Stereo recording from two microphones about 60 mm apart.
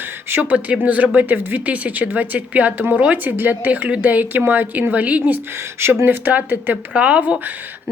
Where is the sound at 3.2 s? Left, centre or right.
Right.